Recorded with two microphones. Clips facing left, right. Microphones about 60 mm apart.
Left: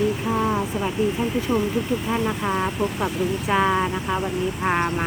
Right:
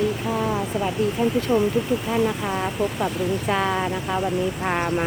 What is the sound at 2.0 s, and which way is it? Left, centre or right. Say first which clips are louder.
Speech: right 1 dB; centre.